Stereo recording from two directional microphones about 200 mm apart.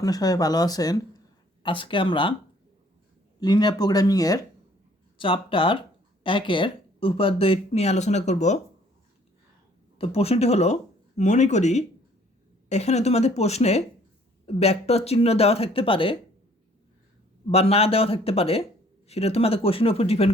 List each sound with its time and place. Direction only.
0.0 s speech: 20° left (ahead or behind)
3.4 s speech: 20° left (ahead or behind)
10.0 s speech: 30° left (ahead or behind)
17.5 s speech: 30° left (ahead or behind)